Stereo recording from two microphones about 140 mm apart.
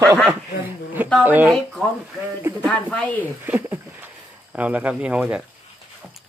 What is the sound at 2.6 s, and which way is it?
Speech, 10° left (ahead or behind).